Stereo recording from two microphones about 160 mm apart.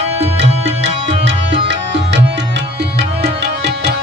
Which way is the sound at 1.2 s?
90° right.